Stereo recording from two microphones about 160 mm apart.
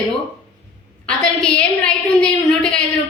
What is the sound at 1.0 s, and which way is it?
A woman's voice, 5° left (ahead or behind).